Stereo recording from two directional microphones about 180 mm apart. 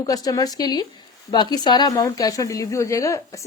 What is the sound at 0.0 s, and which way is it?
A woman's voice, 20° left (ahead or behind).